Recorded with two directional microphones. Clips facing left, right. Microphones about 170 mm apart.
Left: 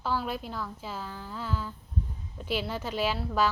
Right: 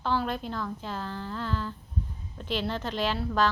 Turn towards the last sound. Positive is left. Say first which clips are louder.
# right 1 dB
turn(degrees=10)  # may be behind; listen again after turning